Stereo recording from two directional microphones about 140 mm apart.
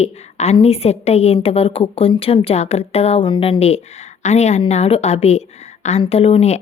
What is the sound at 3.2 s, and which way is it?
A woman's voice, 35° left (ahead or behind).